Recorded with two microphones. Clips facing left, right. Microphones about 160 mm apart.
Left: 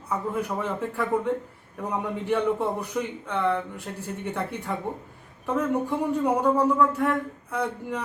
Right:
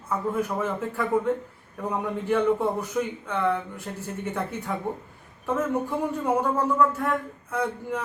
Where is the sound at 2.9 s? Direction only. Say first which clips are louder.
Right 1 dB; centre (ahead or behind).